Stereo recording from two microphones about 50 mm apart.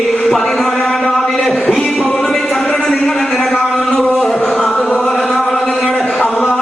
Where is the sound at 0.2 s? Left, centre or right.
Centre.